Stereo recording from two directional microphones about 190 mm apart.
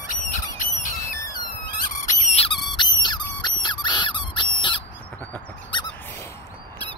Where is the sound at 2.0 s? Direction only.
35° left (ahead or behind).